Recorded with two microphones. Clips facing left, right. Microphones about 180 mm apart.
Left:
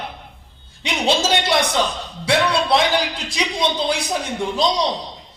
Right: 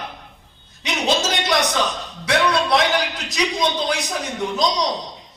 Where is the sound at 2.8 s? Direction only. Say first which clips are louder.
Left 1 dB; 30° left (ahead or behind).